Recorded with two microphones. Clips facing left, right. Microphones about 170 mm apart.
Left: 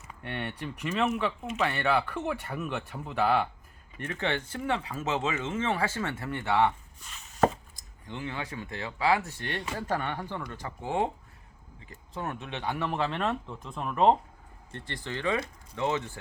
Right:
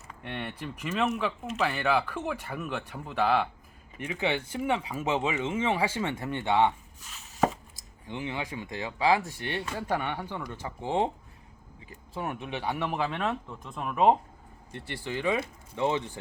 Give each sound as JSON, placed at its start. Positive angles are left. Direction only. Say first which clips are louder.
{"t": 0.2, "sound": "speech", "louder": "left 1 dB", "side_deg": 0}
{"t": 3.9, "sound": "speech", "louder": "right 1 dB", "side_deg": -10}
{"t": 7.0, "sound": "chopping", "louder": "left 2 dB", "side_deg": -5}
{"t": 8.0, "sound": "speech", "louder": "right 2 dB", "side_deg": -15}